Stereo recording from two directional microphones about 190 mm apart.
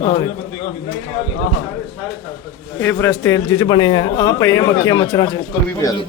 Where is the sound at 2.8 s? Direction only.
10° left (ahead or behind).